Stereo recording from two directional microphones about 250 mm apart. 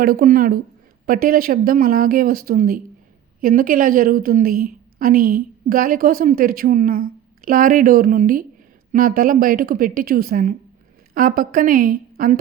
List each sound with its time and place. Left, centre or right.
0.0 s a woman's voice: right